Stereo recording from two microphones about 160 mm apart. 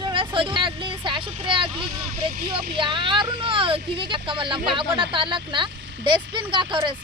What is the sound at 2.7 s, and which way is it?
Speech, 30° right (ahead or behind).